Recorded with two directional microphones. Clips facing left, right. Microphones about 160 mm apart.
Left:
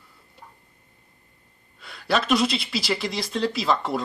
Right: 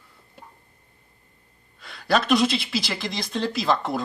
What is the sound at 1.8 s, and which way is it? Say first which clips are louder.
Speech: right 2 dB; centre (ahead or behind).